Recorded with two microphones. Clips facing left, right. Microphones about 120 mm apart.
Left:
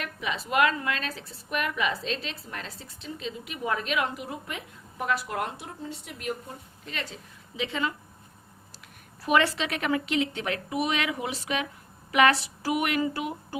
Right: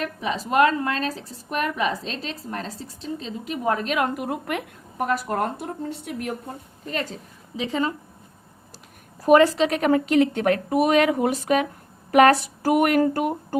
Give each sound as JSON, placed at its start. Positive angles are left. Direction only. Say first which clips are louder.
{"t": 0.0, "sound": "a woman's voice", "louder": "right 6 dB", "side_deg": -35}
{"t": 5.0, "sound": "speech", "louder": "right 5 dB", "side_deg": -45}
{"t": 9.2, "sound": "speech", "louder": "right 9 dB", "side_deg": -40}